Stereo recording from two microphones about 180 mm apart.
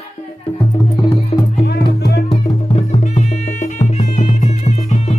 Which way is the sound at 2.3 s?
35° left (ahead or behind).